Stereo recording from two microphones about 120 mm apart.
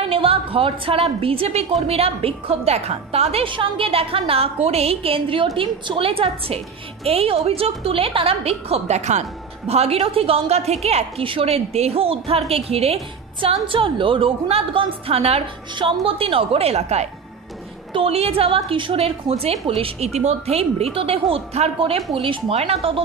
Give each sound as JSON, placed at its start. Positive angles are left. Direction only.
{"t": 0.0, "sound": "a woman's voice", "side_deg": -50}
{"t": 13.7, "sound": "a woman's voice", "side_deg": -45}
{"t": 15.0, "sound": "a woman's voice", "side_deg": -60}
{"t": 15.7, "sound": "a woman's voice", "side_deg": -45}